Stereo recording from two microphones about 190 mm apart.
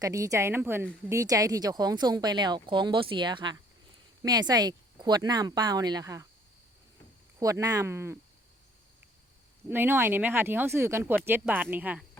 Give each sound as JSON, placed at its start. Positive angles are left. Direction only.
{"t": 0.0, "sound": "speech", "side_deg": -15}
{"t": 7.3, "sound": "speech", "side_deg": -15}
{"t": 9.6, "sound": "speech", "side_deg": -10}